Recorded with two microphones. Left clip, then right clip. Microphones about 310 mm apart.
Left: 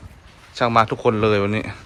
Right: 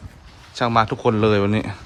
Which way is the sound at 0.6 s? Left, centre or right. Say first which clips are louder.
Left 1 dB; centre.